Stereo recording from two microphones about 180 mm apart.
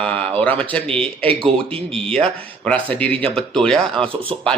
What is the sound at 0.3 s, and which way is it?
A man's voice, 10° left (ahead or behind).